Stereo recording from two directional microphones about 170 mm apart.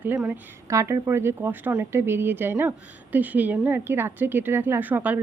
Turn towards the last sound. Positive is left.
turn(degrees=-10)  # may be behind; listen again after turning